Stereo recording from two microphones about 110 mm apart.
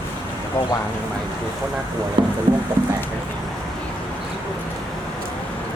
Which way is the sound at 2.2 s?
45° right (ahead or behind).